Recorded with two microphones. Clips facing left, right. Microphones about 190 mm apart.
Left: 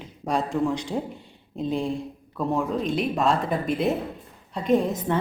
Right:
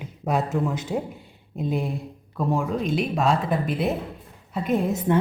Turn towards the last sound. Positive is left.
turn(degrees=-5)  # may be behind; listen again after turning